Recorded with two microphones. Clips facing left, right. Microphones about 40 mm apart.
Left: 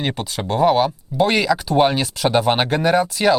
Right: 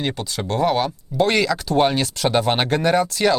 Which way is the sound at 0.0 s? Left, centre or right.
Centre.